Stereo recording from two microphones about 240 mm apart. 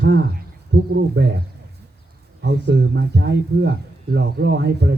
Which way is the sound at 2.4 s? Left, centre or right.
Right.